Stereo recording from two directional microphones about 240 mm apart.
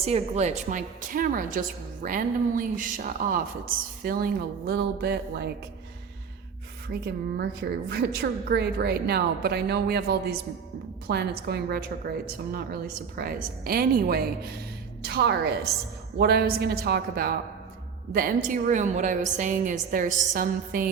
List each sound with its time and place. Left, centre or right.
0.0 s a woman's voice: right
6.8 s a woman's voice: right